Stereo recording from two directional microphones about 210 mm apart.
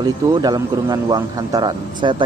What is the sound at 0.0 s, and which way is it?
A man's voice, 20° right (ahead or behind).